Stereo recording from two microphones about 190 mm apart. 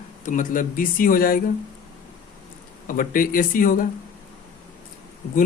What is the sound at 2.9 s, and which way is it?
Speech, 45° left (ahead or behind).